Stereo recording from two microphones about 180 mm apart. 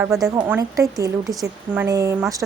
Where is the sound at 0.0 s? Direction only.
20° right (ahead or behind).